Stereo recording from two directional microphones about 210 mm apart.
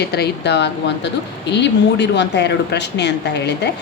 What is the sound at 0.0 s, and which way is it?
A woman's voice, 50° left (ahead or behind).